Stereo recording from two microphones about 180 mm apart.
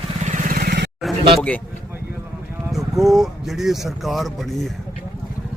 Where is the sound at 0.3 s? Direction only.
45° right (ahead or behind).